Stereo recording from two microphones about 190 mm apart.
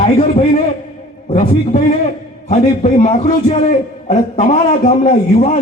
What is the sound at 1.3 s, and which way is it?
A man's voice, 45° left (ahead or behind).